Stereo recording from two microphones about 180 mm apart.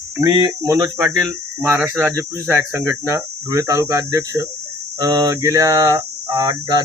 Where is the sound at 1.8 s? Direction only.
10° right (ahead or behind).